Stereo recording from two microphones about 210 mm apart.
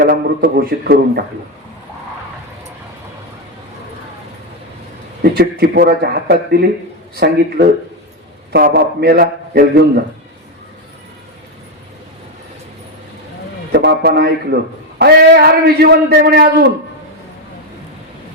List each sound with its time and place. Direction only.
0.0 s a man's voice: 45° right (ahead or behind)
5.2 s a man's voice: 50° right (ahead or behind)
8.5 s a man's voice: 50° right (ahead or behind)
13.7 s a man's voice: 50° right (ahead or behind)